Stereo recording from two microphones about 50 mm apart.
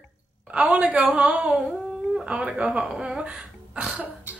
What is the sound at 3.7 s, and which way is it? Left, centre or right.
Cough, centre.